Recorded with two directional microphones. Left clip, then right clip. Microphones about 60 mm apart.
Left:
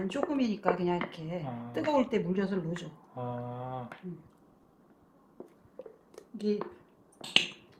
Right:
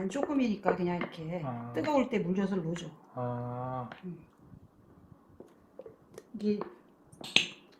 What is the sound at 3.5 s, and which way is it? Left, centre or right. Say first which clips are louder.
Speech: right 2 dB; centre.